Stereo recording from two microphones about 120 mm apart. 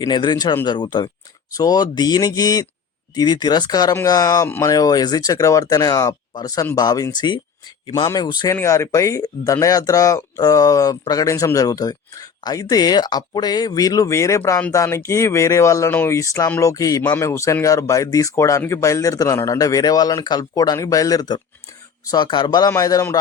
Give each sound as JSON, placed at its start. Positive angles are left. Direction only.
{"t": 0.0, "sound": "speech", "side_deg": 40}
{"t": 4.4, "sound": "speech", "side_deg": 15}
{"t": 4.7, "sound": "speech", "side_deg": 30}
{"t": 8.5, "sound": "speech", "side_deg": 25}
{"t": 17.0, "sound": "speech", "side_deg": 15}
{"t": 22.7, "sound": "speech", "side_deg": 30}